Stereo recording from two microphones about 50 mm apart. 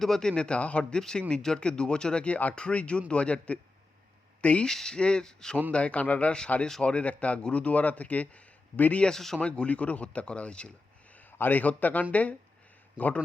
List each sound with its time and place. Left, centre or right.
0.0 s speech: centre
4.4 s a sound: left
4.6 s speech: centre
5.7 s a man's voice: left
9.0 s speech: centre
9.4 s speech: left
11.3 s a man's voice: left